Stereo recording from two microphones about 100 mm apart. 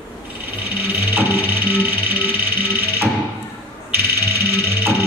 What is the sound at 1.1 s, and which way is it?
Music, 20° right (ahead or behind).